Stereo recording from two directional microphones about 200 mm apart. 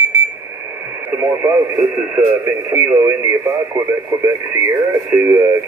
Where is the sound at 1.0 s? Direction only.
10° right (ahead or behind).